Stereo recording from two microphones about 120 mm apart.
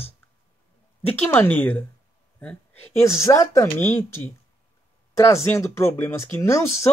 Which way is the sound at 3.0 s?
25° left (ahead or behind).